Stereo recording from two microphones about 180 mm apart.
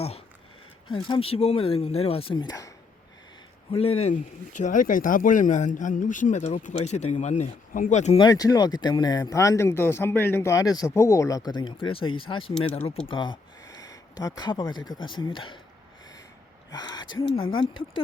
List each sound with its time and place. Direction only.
1.0 s speech: 30° left (ahead or behind)
3.7 s speech: 35° left (ahead or behind)
8.2 s speech: 20° left (ahead or behind)
16.7 s speech: 20° left (ahead or behind)
17.1 s speech: 90° left
17.3 s speech: 25° left (ahead or behind)